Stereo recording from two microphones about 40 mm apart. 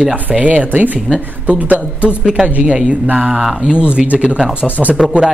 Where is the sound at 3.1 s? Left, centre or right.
Right.